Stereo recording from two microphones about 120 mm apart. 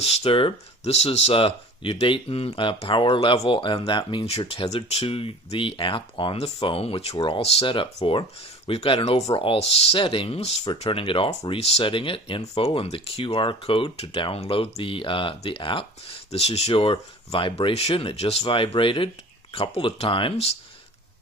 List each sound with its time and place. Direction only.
0.0 s speech: 60° left (ahead or behind); by 4.3 s 40° left (ahead or behind)
4.3 s speech: 60° left (ahead or behind)
7.2 s speech: 45° left (ahead or behind)